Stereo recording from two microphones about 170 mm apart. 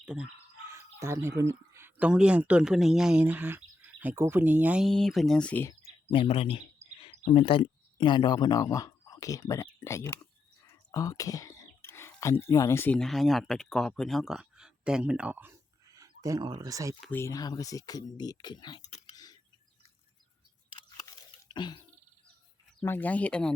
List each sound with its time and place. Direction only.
0.0 s speech: 5° right (ahead or behind)
0.7 s speech: 15° right (ahead or behind)
4.9 s speech: centre (ahead or behind)
6.1 s speech: 35° left (ahead or behind); by 16.9 s 20° right (ahead or behind)
17.1 s speech: 15° left (ahead or behind)
18.8 s a sound: 40° left (ahead or behind)
19.1 s a sound: 20° left (ahead or behind)
21.5 s a sound: 25° left (ahead or behind)
22.8 s speech: 10° left (ahead or behind)